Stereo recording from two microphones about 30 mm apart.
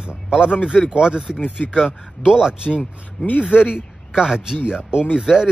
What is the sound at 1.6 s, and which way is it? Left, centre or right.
Speech, left.